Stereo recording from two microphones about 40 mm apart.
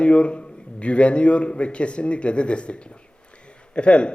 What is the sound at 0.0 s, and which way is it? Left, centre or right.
A man's voice, left.